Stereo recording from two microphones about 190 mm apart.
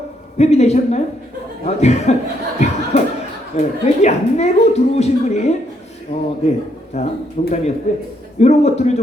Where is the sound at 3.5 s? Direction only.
35° left (ahead or behind).